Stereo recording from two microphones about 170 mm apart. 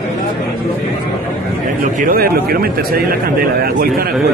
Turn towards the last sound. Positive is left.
turn(degrees=-60)  # may be behind; listen again after turning